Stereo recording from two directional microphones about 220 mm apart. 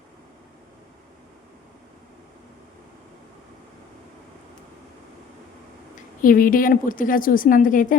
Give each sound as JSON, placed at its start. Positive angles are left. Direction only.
{"t": 6.2, "sound": "a woman's voice", "side_deg": 40}